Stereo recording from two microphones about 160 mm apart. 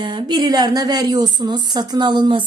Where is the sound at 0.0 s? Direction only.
30° right (ahead or behind).